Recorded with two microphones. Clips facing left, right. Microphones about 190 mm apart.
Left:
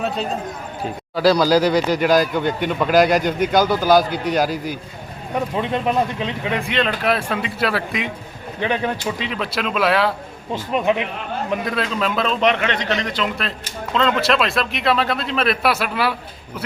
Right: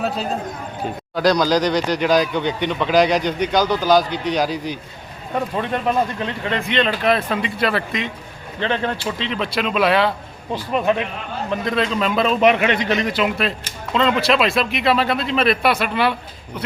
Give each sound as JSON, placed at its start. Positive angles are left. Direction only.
{"t": 0.0, "sound": "speech", "side_deg": 0}
{"t": 10.5, "sound": "a man's voice", "side_deg": 15}